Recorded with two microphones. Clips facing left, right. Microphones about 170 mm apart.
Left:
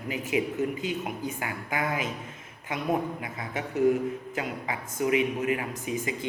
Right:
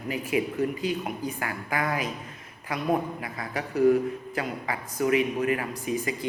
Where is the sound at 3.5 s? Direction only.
20° left (ahead or behind).